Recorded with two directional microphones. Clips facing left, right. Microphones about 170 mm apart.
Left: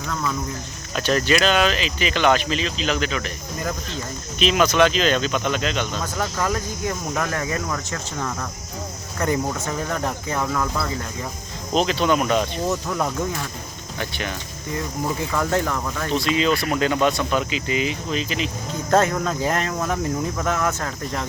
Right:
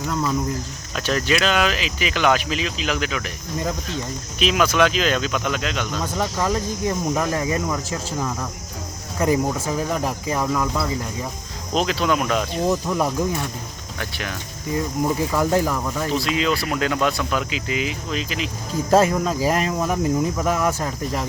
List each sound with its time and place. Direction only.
0.9 s speech: centre (ahead or behind)
4.4 s speech: 5° right (ahead or behind)
7.1 s speech: 15° right (ahead or behind)
8.2 s speech: 5° right (ahead or behind)
12.6 s speech: 10° right (ahead or behind)